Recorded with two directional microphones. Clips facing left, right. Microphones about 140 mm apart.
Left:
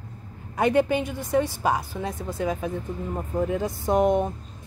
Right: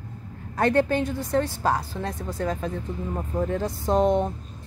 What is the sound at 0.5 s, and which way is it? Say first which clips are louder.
A woman's voice: even; 15° left (ahead or behind).